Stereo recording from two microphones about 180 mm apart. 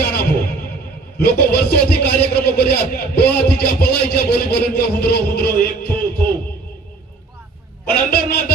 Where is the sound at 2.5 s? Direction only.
60° left (ahead or behind).